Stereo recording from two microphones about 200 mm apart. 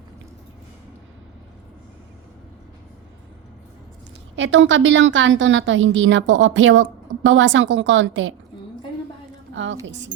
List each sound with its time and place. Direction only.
4.4 s a woman's voice: 65° right (ahead or behind)
9.8 s a woman's voice: 65° right (ahead or behind)